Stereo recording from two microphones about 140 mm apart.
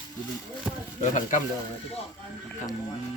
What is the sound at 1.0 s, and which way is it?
Speech, 65° left (ahead or behind).